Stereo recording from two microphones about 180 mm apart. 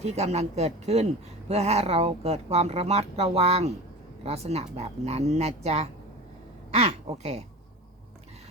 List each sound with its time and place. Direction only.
0.0 s speech: 35° right (ahead or behind)